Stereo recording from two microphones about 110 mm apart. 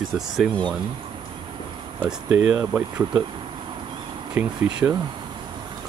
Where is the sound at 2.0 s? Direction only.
5° right (ahead or behind).